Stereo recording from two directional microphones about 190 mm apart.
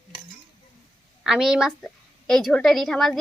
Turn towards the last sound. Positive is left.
turn(degrees=0)  # may be behind; listen again after turning